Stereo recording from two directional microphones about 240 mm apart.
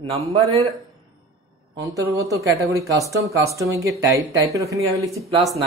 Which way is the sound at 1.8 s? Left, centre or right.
Centre.